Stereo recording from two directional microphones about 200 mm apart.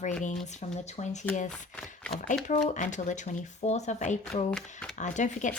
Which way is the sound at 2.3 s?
40° left (ahead or behind).